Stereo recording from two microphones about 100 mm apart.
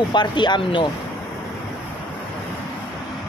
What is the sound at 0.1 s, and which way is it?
Speech, 50° left (ahead or behind).